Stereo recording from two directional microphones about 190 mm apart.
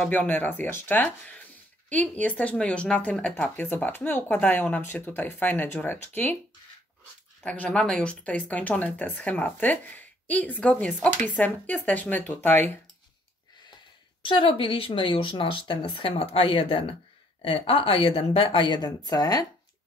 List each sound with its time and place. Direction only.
0.0 s speech: 10° left (ahead or behind)
7.4 s speech: 5° left (ahead or behind)
14.2 s speech: 25° left (ahead or behind)